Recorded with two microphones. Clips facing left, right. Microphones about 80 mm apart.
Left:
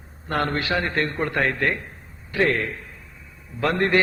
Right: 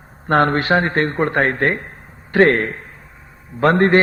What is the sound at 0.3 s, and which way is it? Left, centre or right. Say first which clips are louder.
A man's voice: right 9 dB; right.